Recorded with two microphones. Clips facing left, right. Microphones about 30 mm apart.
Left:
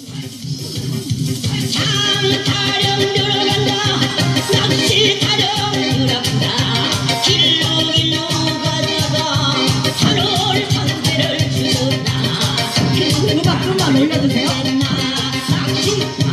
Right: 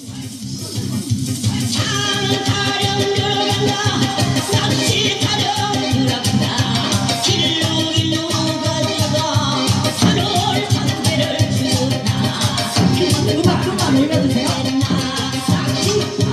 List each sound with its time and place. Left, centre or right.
3.3 s music: left
9.1 s music: centre